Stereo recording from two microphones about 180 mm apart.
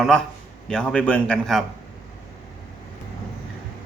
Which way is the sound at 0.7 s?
5° left (ahead or behind).